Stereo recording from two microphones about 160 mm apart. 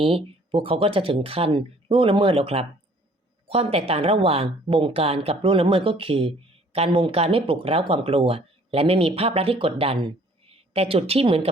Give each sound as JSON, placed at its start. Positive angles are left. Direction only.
{"t": 0.5, "sound": "speech", "side_deg": -35}